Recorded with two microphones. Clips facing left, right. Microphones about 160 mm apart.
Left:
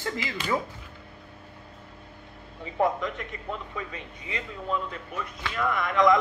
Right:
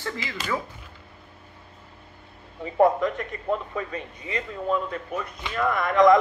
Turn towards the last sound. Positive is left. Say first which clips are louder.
# right 4 dB
turn(degrees=-45)  # may be behind; listen again after turning